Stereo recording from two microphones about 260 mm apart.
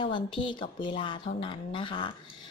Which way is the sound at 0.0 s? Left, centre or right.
Centre.